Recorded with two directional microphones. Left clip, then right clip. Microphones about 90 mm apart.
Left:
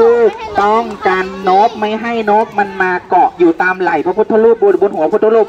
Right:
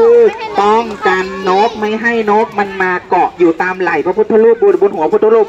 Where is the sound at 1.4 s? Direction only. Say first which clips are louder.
Left 3 dB; 15° left (ahead or behind).